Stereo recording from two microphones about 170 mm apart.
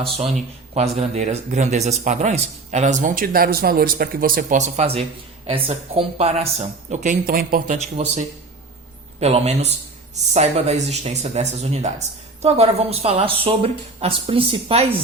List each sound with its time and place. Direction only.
0.2 s speech: 40° right (ahead or behind); by 7.8 s 60° right (ahead or behind)
7.8 s speech: 45° right (ahead or behind)
9.2 s speech: 40° right (ahead or behind)